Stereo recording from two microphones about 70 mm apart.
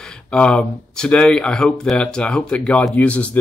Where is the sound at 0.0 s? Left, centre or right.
Centre.